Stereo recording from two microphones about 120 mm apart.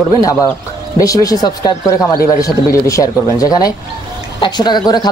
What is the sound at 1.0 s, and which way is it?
Speech, 30° left (ahead or behind).